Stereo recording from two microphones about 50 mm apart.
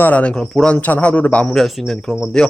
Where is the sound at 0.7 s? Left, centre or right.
Left.